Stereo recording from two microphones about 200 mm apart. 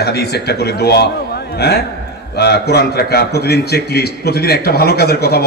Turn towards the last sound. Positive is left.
turn(degrees=55)  # may be behind; listen again after turning